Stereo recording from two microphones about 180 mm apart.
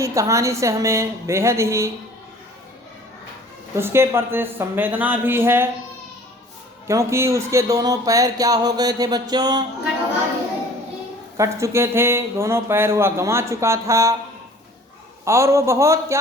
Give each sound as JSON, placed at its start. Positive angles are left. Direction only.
{"t": 0.0, "sound": "speech", "side_deg": -15}
{"t": 3.8, "sound": "speech", "side_deg": -15}
{"t": 6.8, "sound": "speech", "side_deg": -15}
{"t": 11.3, "sound": "speech", "side_deg": -15}
{"t": 15.2, "sound": "speech", "side_deg": -15}